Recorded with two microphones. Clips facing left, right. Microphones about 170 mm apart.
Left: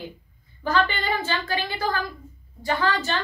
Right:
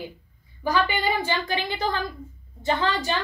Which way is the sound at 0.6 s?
10° right (ahead or behind).